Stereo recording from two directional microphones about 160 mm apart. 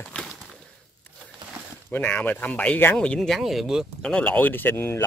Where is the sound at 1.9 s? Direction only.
10° left (ahead or behind).